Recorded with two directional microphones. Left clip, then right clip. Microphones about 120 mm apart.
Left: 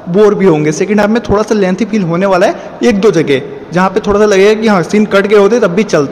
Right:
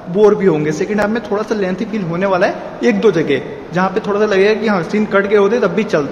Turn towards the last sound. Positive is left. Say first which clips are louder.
# left 5 dB
turn(degrees=55)  # may be behind; listen again after turning